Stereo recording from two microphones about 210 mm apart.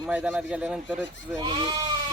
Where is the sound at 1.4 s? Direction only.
20° right (ahead or behind).